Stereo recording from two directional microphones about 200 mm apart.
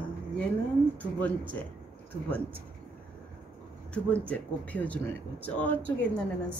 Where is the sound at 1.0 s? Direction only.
10° left (ahead or behind).